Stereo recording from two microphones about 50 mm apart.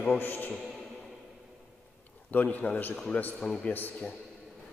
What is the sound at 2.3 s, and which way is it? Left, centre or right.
Speech, left.